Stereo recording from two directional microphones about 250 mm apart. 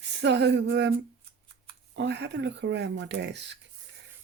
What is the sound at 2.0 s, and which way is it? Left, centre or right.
Speech, right.